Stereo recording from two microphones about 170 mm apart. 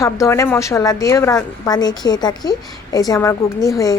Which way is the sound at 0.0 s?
20° left (ahead or behind).